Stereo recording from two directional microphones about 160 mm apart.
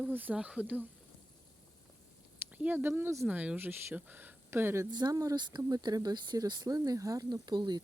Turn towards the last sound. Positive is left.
turn(degrees=-25)  # may be behind; listen again after turning